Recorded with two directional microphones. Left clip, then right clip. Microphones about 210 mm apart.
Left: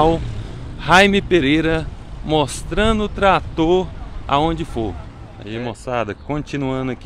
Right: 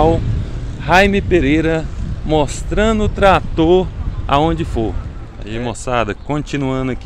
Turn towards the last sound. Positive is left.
turn(degrees=-5)  # may be behind; listen again after turning